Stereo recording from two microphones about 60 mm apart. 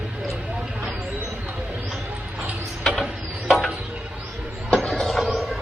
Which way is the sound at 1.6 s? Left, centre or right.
Centre.